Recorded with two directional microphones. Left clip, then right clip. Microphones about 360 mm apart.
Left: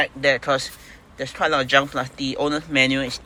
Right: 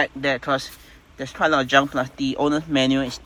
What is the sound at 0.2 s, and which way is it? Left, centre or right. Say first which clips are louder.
Speech: left 3 dB; centre.